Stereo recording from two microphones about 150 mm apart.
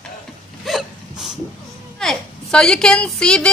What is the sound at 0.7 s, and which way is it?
Hiccup, centre (ahead or behind).